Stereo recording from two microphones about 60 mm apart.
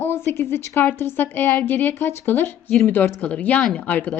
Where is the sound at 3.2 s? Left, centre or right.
Left.